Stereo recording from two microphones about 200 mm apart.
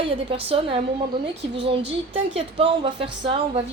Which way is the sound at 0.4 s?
30° right (ahead or behind).